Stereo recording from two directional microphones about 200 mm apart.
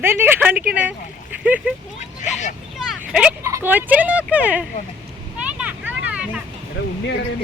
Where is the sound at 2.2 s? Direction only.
35° left (ahead or behind).